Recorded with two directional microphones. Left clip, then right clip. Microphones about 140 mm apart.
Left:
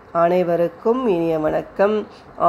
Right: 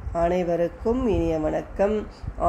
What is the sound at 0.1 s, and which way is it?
Speech, 10° left (ahead or behind).